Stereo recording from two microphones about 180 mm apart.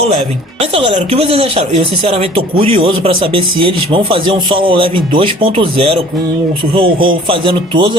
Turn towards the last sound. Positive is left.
turn(degrees=-25)  # may be behind; listen again after turning